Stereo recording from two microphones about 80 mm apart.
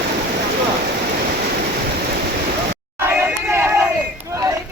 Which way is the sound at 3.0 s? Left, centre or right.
Right.